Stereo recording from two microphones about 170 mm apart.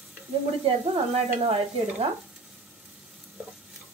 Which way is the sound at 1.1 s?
35° right (ahead or behind).